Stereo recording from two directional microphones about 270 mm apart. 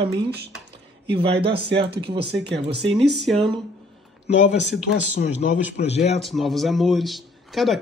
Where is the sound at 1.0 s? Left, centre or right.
Centre.